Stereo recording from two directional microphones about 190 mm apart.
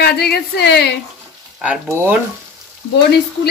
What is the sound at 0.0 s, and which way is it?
Speech, 60° left (ahead or behind).